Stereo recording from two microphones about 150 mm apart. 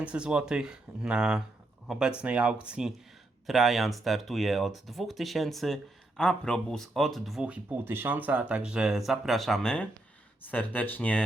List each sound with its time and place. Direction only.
0.0 s speech: 5° right (ahead or behind); by 11.2 s 10° left (ahead or behind)